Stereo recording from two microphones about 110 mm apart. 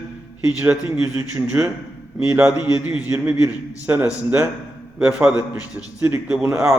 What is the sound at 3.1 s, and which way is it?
A man's voice, 25° right (ahead or behind).